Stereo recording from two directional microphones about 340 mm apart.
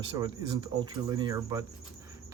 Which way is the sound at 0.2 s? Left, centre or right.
Centre.